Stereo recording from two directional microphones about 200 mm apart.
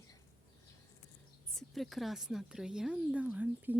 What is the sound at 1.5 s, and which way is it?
Speech, centre (ahead or behind).